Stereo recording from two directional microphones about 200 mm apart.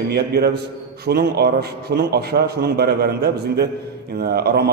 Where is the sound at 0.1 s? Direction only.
50° right (ahead or behind).